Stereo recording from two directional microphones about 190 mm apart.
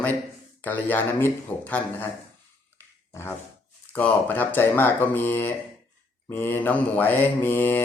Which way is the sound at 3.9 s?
10° left (ahead or behind).